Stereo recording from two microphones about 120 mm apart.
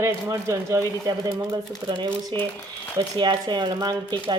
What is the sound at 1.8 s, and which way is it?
Speech, 40° right (ahead or behind).